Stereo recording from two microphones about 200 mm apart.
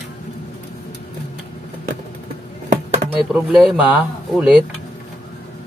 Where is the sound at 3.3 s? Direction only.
Centre (ahead or behind).